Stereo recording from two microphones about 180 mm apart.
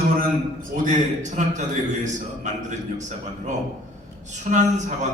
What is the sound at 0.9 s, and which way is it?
A man's voice, 45° right (ahead or behind).